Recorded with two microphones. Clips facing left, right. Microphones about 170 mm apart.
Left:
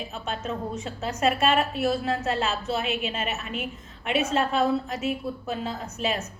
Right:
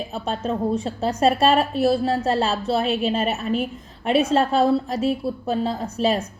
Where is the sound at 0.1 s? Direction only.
35° right (ahead or behind).